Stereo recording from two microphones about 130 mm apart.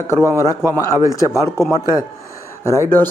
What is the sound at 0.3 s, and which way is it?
A man's voice, 20° left (ahead or behind).